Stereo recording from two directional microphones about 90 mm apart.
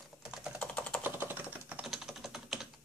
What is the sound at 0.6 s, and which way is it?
Sewing machine, 15° left (ahead or behind).